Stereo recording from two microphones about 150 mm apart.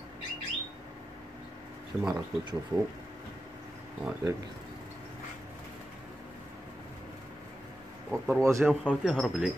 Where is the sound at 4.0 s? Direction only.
20° right (ahead or behind).